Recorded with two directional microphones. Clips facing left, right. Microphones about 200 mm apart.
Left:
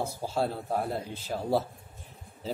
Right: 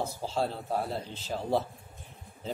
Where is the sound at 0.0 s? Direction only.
10° left (ahead or behind).